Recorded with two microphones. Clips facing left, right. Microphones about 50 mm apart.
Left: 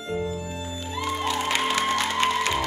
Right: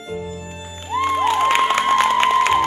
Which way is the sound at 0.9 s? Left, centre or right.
Right.